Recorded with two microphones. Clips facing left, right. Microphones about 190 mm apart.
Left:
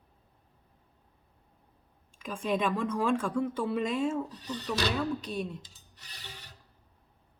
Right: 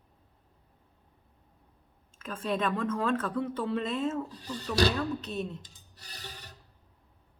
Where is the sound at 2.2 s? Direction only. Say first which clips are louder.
Left 1 dB; 10° left (ahead or behind).